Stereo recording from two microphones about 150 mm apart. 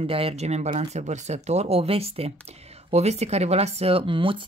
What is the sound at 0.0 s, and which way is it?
Speech, 40° right (ahead or behind).